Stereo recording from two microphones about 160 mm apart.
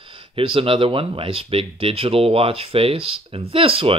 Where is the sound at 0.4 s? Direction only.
35° right (ahead or behind).